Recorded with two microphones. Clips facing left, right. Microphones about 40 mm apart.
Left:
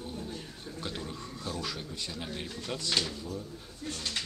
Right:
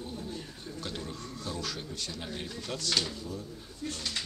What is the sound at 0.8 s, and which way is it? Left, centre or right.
A man's voice, centre.